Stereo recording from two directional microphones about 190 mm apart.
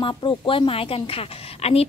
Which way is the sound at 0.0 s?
25° left (ahead or behind).